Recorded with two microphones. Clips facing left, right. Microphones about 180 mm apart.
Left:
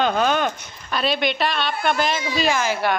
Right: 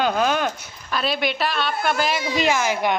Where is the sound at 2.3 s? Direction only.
15° right (ahead or behind).